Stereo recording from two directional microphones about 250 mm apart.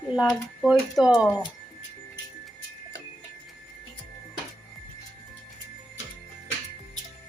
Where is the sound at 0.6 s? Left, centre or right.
Centre.